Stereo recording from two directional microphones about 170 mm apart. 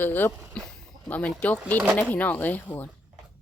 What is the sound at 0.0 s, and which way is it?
Speech, 10° left (ahead or behind).